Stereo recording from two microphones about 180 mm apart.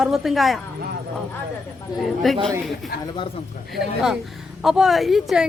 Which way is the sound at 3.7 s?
Centre (ahead or behind).